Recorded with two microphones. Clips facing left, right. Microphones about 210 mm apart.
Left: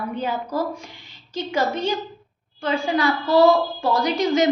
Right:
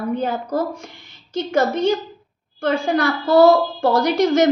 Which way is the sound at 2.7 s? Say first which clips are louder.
Right 2 dB; 45° right (ahead or behind).